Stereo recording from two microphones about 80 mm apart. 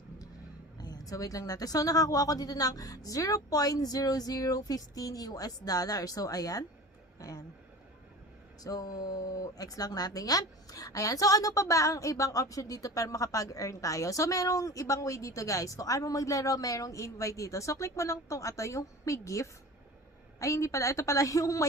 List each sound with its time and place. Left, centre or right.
0.8 s speech: left
8.6 s a woman's voice: left